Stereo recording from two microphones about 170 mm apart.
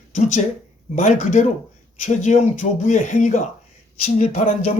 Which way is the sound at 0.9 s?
45° left (ahead or behind).